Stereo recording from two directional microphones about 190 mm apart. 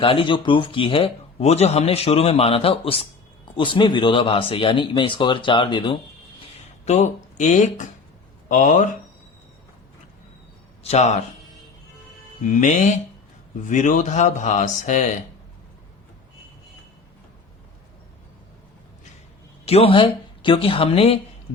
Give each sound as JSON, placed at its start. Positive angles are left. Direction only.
{"t": 0.0, "sound": "speech", "side_deg": 25}
{"t": 6.8, "sound": "speech", "side_deg": 35}
{"t": 10.8, "sound": "speech", "side_deg": 35}
{"t": 12.5, "sound": "speech", "side_deg": 40}
{"t": 19.6, "sound": "speech", "side_deg": 30}